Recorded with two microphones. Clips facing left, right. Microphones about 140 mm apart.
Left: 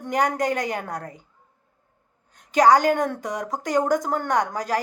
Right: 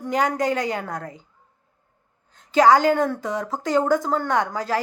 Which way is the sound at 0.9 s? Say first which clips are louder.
Right 1 dB; 35° left (ahead or behind).